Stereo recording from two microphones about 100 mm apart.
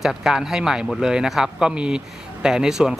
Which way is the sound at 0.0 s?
5° right (ahead or behind).